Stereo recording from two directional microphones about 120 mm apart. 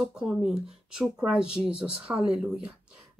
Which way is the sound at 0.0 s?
5° right (ahead or behind).